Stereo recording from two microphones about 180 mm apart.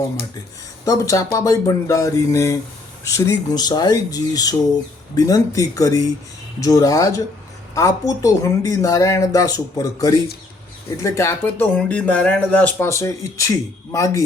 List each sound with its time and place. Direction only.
0.9 s speech: 20° left (ahead or behind)